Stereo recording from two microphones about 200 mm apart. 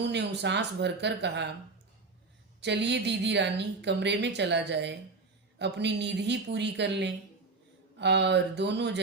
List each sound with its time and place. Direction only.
0.0 s speech: 60° right (ahead or behind)
2.6 s speech: 60° right (ahead or behind)